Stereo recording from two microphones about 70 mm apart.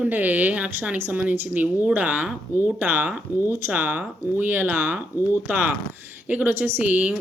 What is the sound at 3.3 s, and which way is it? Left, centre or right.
Speech, left.